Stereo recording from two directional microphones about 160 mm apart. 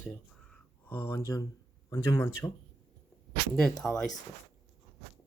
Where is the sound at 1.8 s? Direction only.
15° left (ahead or behind).